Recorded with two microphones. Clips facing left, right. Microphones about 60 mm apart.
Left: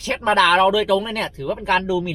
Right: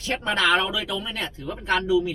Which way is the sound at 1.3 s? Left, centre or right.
Left.